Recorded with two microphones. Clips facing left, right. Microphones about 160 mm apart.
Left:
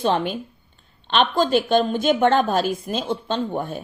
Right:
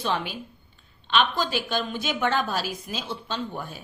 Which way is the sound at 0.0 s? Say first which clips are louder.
Left 7 dB; 50° left (ahead or behind).